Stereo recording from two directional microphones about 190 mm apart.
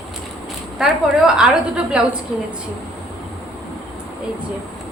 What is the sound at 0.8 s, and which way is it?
A woman's voice, 5° right (ahead or behind).